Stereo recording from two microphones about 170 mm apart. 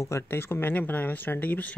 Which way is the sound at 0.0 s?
15° left (ahead or behind).